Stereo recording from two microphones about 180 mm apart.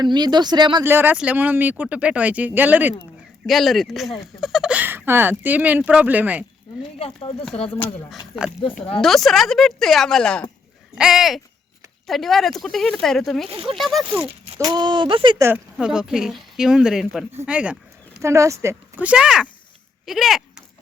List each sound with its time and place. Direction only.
0.0 s speech: 25° right (ahead or behind)
0.9 s speech: 10° right (ahead or behind)
7.0 s speech: 30° left (ahead or behind)
9.0 s speech: centre (ahead or behind)
14.2 s speech: 25° right (ahead or behind)
15.4 s speech: 10° right (ahead or behind)